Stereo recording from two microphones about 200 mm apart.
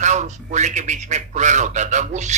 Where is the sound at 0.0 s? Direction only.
35° right (ahead or behind).